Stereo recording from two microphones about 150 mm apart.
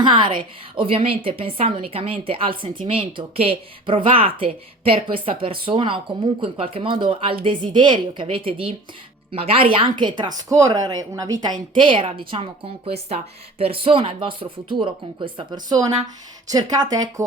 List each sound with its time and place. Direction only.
0.0 s a woman's voice: 30° right (ahead or behind)